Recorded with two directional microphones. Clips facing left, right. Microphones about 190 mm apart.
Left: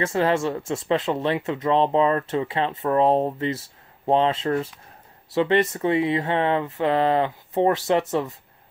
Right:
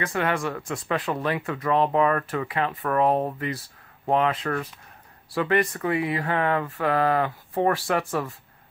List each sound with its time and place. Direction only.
0.0 s speech: 25° left (ahead or behind)